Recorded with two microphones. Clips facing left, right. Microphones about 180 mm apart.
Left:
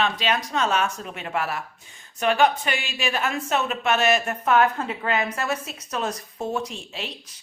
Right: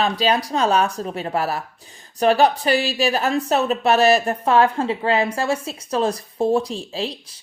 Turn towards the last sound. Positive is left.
turn(degrees=-35)  # may be behind; listen again after turning